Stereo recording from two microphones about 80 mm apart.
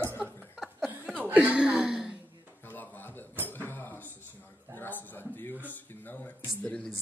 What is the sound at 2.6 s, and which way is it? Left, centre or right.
Music, left.